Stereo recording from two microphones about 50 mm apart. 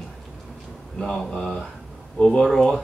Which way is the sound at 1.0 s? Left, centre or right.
Centre.